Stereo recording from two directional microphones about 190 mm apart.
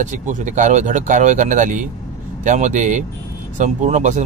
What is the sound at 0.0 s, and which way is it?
Speech, 40° right (ahead or behind).